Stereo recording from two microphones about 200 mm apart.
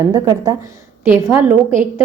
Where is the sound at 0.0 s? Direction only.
20° right (ahead or behind).